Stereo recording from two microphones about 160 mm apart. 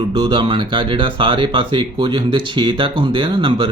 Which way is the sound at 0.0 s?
30° right (ahead or behind).